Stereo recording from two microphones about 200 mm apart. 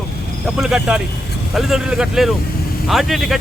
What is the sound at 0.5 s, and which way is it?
Speech, 5° right (ahead or behind).